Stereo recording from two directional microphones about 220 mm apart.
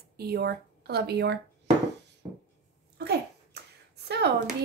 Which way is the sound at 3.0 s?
50° right (ahead or behind).